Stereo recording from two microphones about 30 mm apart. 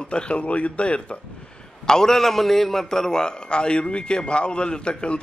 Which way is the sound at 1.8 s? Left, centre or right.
Left.